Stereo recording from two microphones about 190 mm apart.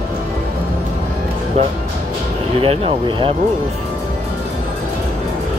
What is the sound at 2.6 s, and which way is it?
Speech, 30° right (ahead or behind).